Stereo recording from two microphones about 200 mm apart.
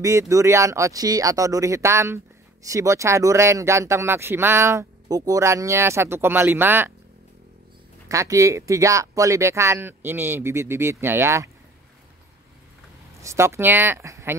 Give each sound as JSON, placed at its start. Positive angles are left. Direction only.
{"t": 0.0, "sound": "speech", "side_deg": -15}
{"t": 8.1, "sound": "speech", "side_deg": -15}
{"t": 13.2, "sound": "speech", "side_deg": -15}